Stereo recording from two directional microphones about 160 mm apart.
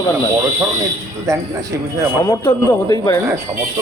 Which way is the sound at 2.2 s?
20° left (ahead or behind).